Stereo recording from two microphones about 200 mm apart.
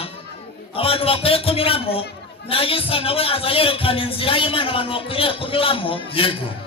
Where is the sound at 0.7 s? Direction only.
30° left (ahead or behind).